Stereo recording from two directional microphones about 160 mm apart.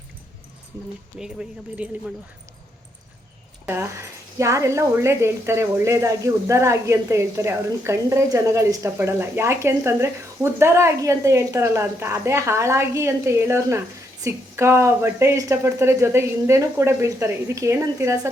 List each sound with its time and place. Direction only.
1.2 s speech: 5° right (ahead or behind)
3.7 s speech: 15° right (ahead or behind)